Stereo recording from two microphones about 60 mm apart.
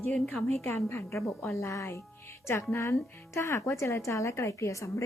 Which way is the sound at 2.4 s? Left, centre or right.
Left.